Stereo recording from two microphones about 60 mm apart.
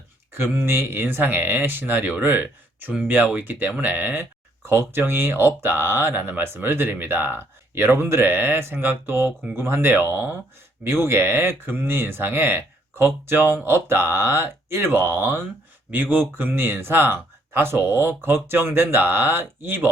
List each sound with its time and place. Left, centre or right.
0.3 s speech: right